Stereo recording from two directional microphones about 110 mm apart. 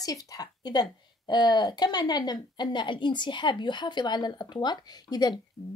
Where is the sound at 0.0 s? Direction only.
35° left (ahead or behind).